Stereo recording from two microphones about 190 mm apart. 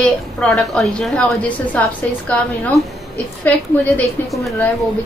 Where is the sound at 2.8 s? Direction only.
15° right (ahead or behind).